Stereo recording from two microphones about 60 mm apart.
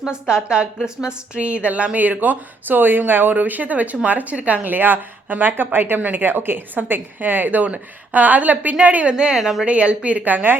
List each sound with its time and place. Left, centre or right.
0.0 s a woman's voice: centre
9.4 s speech: centre
9.6 s a woman's voice: centre